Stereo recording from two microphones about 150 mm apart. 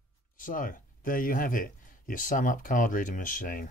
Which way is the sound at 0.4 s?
65° left (ahead or behind).